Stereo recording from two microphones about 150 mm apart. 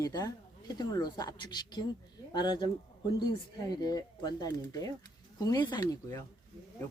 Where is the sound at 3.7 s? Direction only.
25° left (ahead or behind).